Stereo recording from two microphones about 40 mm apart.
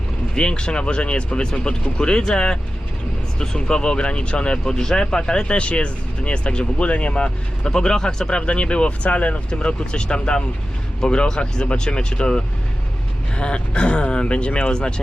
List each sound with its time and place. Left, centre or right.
0.3 s speech: left